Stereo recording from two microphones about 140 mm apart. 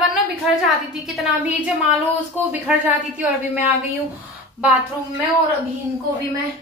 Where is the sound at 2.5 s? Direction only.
10° right (ahead or behind).